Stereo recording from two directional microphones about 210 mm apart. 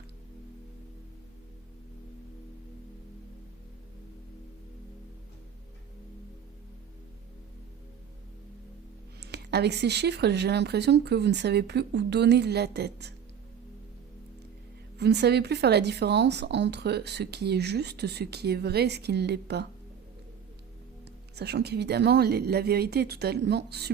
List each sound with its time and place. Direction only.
9.2 s speech: 50° right (ahead or behind)
14.9 s speech: 50° right (ahead or behind)
21.3 s speech: 50° right (ahead or behind)